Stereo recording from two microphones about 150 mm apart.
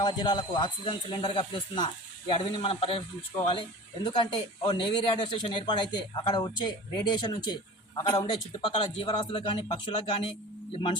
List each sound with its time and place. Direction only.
0.0 s a man's voice: 30° left (ahead or behind)